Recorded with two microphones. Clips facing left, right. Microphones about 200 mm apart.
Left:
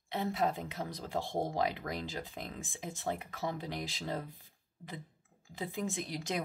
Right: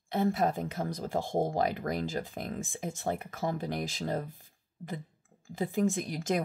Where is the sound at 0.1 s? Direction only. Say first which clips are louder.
Right 5 dB; 45° right (ahead or behind).